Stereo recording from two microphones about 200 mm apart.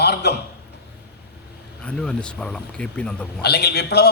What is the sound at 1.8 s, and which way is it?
Speech, 5° left (ahead or behind).